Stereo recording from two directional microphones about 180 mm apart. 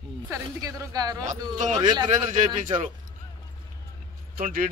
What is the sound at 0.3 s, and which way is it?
Speech, 20° right (ahead or behind).